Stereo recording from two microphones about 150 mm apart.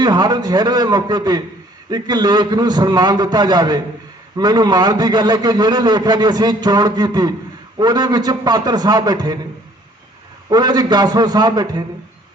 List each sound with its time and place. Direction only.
0.0 s a man's voice: 25° right (ahead or behind)
10.5 s a man's voice: 25° right (ahead or behind)